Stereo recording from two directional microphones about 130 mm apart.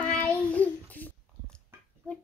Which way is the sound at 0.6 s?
10° left (ahead or behind).